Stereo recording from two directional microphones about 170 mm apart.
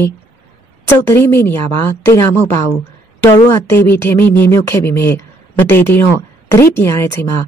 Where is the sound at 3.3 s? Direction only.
15° left (ahead or behind).